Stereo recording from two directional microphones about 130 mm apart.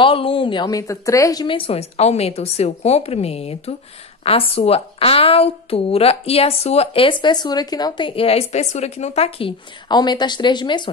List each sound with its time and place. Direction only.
0.0 s a woman's voice: 45° left (ahead or behind)
8.1 s a woman's voice: 50° left (ahead or behind)
9.8 s speech: 35° left (ahead or behind)